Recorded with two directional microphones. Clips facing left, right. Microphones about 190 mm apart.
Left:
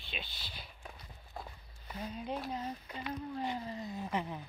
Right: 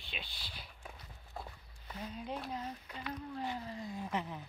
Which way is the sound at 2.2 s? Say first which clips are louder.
Left 2 dB; centre (ahead or behind).